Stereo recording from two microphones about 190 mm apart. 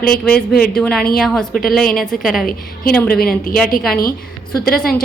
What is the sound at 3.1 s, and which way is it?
Speech, 50° left (ahead or behind).